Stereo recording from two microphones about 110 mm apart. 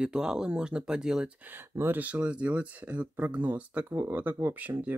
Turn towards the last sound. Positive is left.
turn(degrees=-15)  # may be behind; listen again after turning